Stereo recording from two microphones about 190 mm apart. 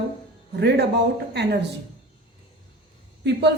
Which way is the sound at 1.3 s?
60° right (ahead or behind).